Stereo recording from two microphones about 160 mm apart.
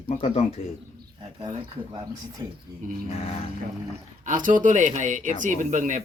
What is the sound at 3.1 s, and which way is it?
Speech, 40° left (ahead or behind).